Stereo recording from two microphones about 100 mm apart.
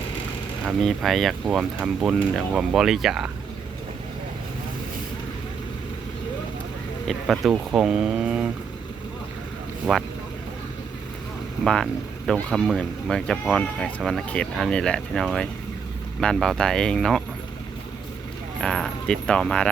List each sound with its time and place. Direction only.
0.8 s speech: 5° left (ahead or behind)
7.1 s speech: centre (ahead or behind)
7.5 s speech: 15° right (ahead or behind)
7.9 s speech: 5° right (ahead or behind)
9.9 s speech: centre (ahead or behind)
11.6 s speech: 5° left (ahead or behind)
18.6 s speech: 5° left (ahead or behind)